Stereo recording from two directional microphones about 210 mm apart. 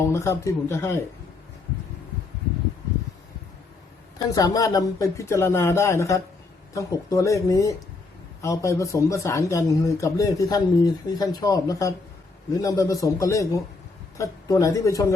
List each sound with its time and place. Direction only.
0.0 s a man's voice: 15° left (ahead or behind)
4.2 s a man's voice: 15° left (ahead or behind)